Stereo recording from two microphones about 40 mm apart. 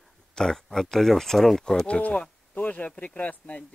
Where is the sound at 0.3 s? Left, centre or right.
Centre.